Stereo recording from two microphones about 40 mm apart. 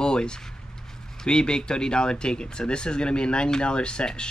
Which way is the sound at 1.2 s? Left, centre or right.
Centre.